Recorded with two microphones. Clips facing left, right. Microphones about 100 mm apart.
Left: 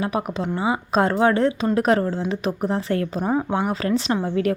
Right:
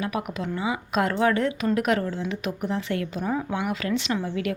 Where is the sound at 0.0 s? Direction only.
30° left (ahead or behind).